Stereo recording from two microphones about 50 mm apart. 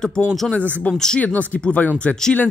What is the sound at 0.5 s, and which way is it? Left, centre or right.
Speech, left.